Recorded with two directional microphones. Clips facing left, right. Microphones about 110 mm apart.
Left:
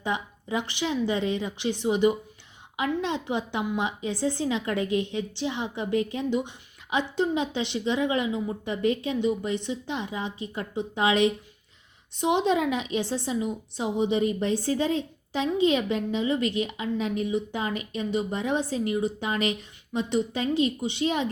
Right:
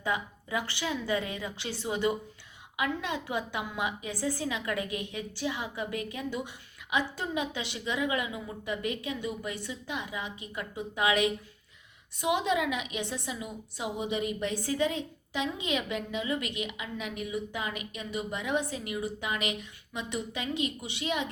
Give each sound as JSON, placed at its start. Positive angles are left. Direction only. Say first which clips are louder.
{"t": 0.0, "sound": "a woman's voice", "louder": "left 2 dB", "side_deg": 25}